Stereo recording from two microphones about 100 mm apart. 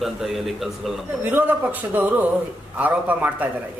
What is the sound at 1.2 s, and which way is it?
A man's voice, 20° right (ahead or behind).